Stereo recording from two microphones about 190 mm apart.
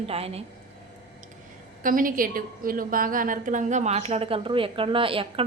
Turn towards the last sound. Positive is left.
turn(degrees=-30)  # may be behind; listen again after turning